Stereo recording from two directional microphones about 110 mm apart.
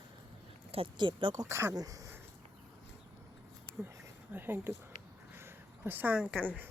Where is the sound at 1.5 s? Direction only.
25° right (ahead or behind).